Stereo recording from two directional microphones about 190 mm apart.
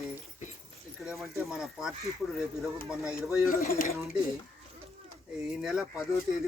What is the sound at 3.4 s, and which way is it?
Speech, 50° left (ahead or behind).